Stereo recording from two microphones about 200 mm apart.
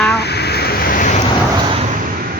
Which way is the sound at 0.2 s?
55° left (ahead or behind).